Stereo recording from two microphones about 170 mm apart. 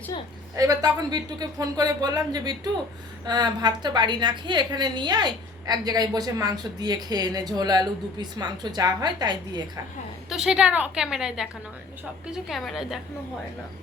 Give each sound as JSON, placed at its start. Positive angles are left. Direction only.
{"t": 0.5, "sound": "a woman's voice", "side_deg": -20}
{"t": 10.2, "sound": "a woman's voice", "side_deg": -5}